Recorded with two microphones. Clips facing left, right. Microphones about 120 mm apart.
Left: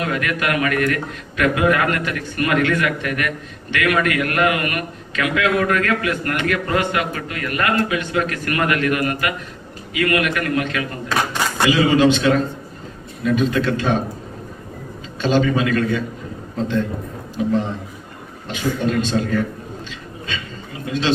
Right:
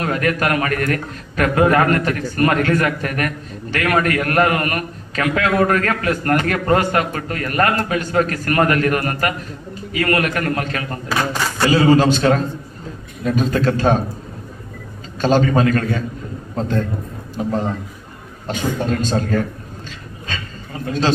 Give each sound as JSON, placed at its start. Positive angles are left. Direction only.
{"t": 0.0, "sound": "a man's voice", "side_deg": -40}
{"t": 15.2, "sound": "a man's voice", "side_deg": -45}
{"t": 19.9, "sound": "a sound", "side_deg": -45}